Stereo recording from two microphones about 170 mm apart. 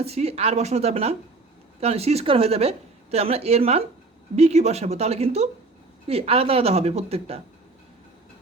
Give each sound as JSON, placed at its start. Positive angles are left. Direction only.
{"t": 0.0, "sound": "speech", "side_deg": -35}